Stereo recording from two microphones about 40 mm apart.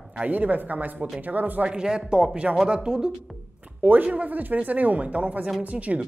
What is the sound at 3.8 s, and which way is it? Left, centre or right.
Speech, right.